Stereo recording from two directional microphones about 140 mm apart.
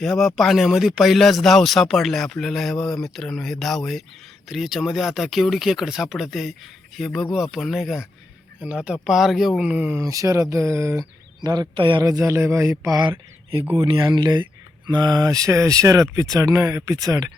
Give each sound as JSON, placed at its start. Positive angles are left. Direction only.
{"t": 0.0, "sound": "speech", "side_deg": 5}
{"t": 10.0, "sound": "speech", "side_deg": -25}
{"t": 12.0, "sound": "speech", "side_deg": -20}